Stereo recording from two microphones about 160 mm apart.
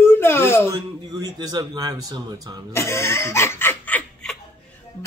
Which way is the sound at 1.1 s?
25° right (ahead or behind).